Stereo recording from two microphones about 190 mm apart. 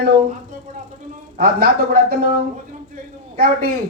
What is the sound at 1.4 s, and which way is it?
Speech, 55° right (ahead or behind).